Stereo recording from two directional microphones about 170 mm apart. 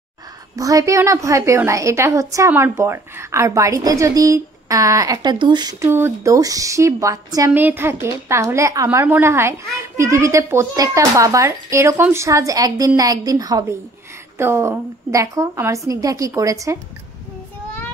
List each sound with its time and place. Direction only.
0.6 s a woman's voice: 20° right (ahead or behind)